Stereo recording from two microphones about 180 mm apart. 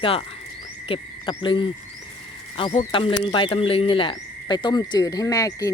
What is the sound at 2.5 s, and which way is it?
Speech, 30° left (ahead or behind).